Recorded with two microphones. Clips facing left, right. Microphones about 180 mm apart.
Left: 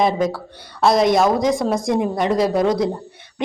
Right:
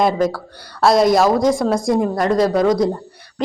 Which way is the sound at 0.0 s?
Centre (ahead or behind).